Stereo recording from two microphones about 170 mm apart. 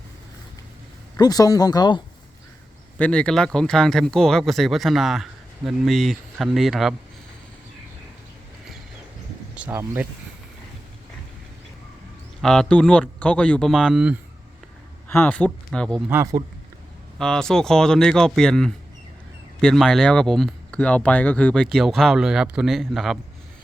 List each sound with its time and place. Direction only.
1.1 s speech: 20° left (ahead or behind)
3.0 s speech: 5° left (ahead or behind)
9.6 s speech: 10° right (ahead or behind)
12.4 s speech: 5° left (ahead or behind)
15.1 s speech: 10° left (ahead or behind)
16.0 s speech: 15° right (ahead or behind)
17.2 s speech: 5° left (ahead or behind)